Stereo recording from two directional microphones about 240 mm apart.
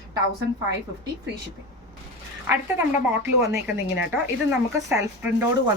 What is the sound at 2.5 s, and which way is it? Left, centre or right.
A woman's voice, centre.